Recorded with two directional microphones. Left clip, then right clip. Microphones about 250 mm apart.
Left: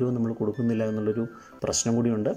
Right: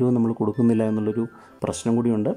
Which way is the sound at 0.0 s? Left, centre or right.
Centre.